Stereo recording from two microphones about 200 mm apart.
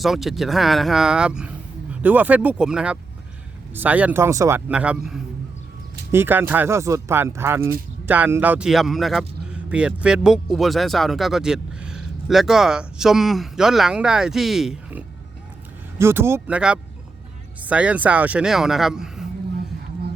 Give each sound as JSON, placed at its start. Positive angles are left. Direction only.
{"t": 0.0, "sound": "speech", "side_deg": 0}